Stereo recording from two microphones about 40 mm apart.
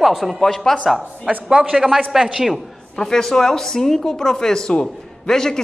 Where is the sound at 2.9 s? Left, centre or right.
Centre.